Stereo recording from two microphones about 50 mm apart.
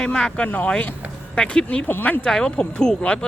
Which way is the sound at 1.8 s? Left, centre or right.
Left.